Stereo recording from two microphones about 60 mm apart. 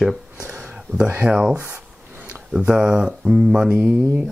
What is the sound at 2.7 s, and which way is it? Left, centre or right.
Speech, centre.